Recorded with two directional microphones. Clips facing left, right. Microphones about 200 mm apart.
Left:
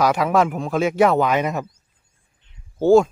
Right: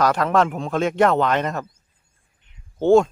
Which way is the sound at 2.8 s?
5° left (ahead or behind).